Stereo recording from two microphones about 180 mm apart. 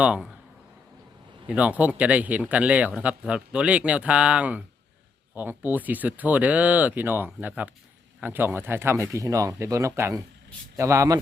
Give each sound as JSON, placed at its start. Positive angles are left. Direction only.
{"t": 0.0, "sound": "speech", "side_deg": -5}
{"t": 1.5, "sound": "speech", "side_deg": -10}